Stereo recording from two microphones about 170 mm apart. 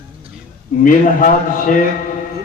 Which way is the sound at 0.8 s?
55° left (ahead or behind).